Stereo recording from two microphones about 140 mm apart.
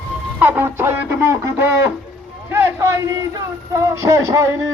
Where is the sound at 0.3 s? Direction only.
15° right (ahead or behind).